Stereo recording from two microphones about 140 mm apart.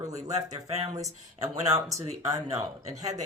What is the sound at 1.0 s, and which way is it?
Speech, 25° right (ahead or behind).